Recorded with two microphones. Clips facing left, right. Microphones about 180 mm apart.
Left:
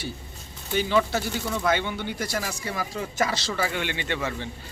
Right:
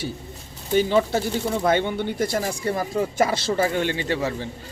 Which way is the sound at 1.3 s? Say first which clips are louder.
Right 4 dB; 30° right (ahead or behind).